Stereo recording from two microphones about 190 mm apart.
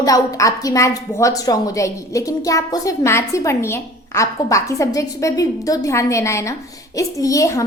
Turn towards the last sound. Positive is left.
turn(degrees=15)  # may be behind; listen again after turning